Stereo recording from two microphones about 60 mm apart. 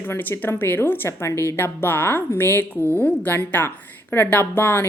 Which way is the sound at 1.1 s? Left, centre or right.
Left.